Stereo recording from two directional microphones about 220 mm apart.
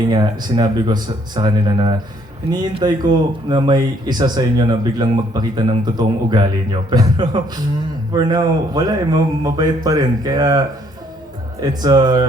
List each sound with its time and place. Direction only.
0.1 s speech: 20° right (ahead or behind)
11.6 s speech: 15° right (ahead or behind)